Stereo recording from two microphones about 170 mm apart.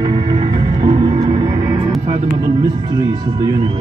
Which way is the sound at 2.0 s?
45° right (ahead or behind).